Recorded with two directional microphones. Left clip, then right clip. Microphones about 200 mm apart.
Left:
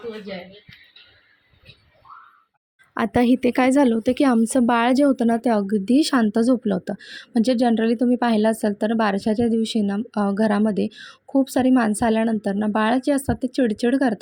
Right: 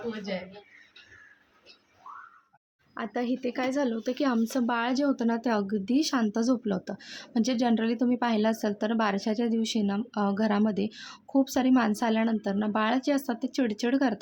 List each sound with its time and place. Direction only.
2.9 s a woman's voice: 45° left (ahead or behind); by 14.2 s 25° left (ahead or behind)